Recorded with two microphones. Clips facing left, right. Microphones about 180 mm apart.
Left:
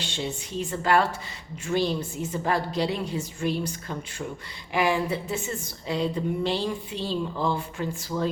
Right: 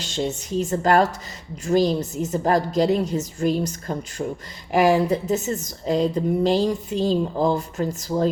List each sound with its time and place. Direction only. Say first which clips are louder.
0.0 s a woman's voice: right 6 dB; 45° right (ahead or behind)